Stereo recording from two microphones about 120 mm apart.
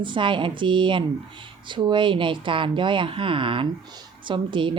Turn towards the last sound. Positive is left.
turn(degrees=-45)  # may be behind; listen again after turning